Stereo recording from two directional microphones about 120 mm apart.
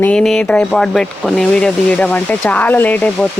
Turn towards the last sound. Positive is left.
turn(degrees=10)  # may be behind; listen again after turning